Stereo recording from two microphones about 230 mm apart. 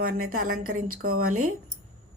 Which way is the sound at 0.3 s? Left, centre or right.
Right.